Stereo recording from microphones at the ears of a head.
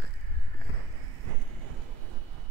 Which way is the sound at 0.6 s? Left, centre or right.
Right.